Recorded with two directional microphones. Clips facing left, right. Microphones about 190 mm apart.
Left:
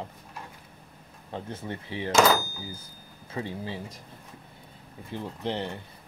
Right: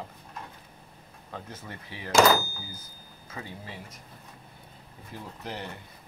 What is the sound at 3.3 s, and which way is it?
Speech, 30° left (ahead or behind).